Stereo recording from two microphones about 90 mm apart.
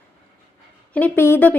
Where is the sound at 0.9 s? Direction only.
20° left (ahead or behind).